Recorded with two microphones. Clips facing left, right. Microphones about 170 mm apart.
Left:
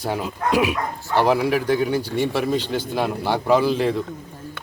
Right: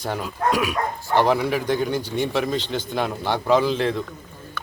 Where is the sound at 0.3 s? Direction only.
25° left (ahead or behind).